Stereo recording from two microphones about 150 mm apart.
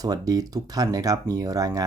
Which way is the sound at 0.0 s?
25° right (ahead or behind).